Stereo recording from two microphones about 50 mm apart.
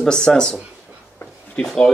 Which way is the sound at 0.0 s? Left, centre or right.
Centre.